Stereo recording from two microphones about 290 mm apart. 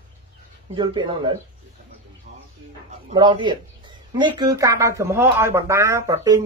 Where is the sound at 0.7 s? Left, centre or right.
Centre.